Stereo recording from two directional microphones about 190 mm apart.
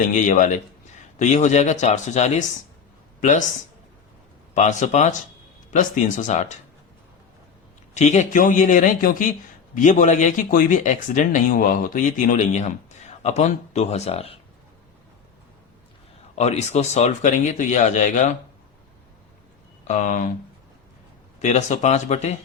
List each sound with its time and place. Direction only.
0.0 s speech: 40° left (ahead or behind)
4.5 s speech: 40° left (ahead or behind)
7.9 s speech: 35° left (ahead or behind)
16.3 s speech: 35° left (ahead or behind)
19.9 s speech: 40° left (ahead or behind)
21.3 s speech: 40° left (ahead or behind)